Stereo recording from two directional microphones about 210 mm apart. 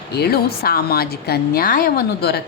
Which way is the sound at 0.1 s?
50° left (ahead or behind).